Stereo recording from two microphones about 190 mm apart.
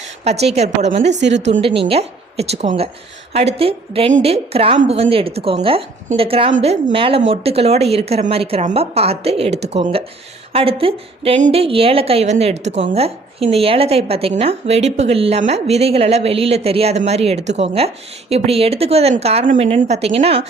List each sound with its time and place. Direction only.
0.3 s a woman's voice: 35° right (ahead or behind)
1.2 s a woman's voice: 70° right (ahead or behind)
1.5 s a woman's voice: 35° right (ahead or behind)